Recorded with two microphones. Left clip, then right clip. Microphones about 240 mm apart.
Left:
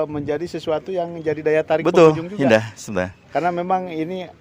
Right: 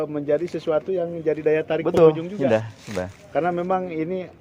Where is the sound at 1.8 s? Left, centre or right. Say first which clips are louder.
Left 2 dB; left.